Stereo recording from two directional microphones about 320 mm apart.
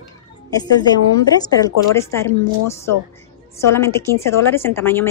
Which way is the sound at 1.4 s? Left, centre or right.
Centre.